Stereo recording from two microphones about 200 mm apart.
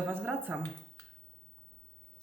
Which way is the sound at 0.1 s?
10° right (ahead or behind).